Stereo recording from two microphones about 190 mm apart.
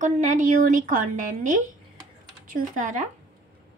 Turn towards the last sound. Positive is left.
turn(degrees=-40)  # may be behind; listen again after turning